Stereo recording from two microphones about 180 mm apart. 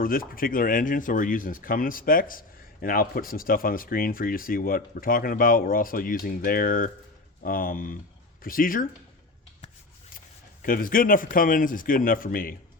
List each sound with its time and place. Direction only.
0.0 s speech: 55° left (ahead or behind)
10.6 s speech: 50° left (ahead or behind)